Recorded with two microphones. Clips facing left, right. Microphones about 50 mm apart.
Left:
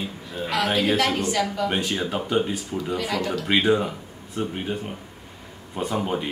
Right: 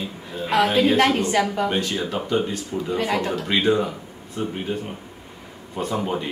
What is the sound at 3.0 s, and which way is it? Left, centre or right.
Speech, right.